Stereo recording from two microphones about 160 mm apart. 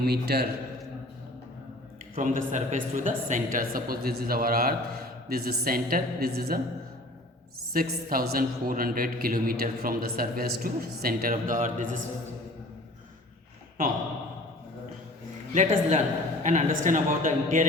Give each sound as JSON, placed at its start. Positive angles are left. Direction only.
{"t": 0.0, "sound": "a man's voice", "side_deg": -80}
{"t": 2.1, "sound": "a woman's voice", "side_deg": -55}
{"t": 7.7, "sound": "a man's voice", "side_deg": -65}
{"t": 15.5, "sound": "a man's voice", "side_deg": -45}